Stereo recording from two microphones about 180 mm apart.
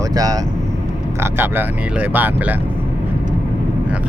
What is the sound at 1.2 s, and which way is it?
Speech, 10° right (ahead or behind).